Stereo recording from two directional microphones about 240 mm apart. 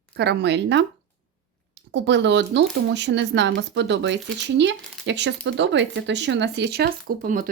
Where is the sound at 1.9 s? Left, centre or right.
Right.